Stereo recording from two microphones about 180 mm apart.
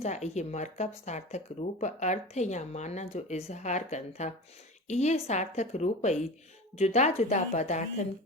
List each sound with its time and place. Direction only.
0.0 s speech: 40° left (ahead or behind)